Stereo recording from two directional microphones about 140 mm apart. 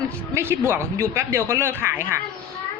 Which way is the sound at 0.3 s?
15° right (ahead or behind).